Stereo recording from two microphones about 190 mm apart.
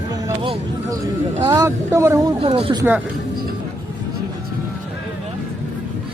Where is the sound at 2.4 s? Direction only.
25° right (ahead or behind).